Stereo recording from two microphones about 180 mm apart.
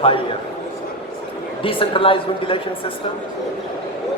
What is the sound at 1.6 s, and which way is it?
Speech, 30° left (ahead or behind).